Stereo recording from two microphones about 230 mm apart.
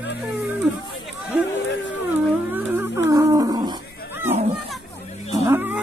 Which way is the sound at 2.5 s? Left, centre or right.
Centre.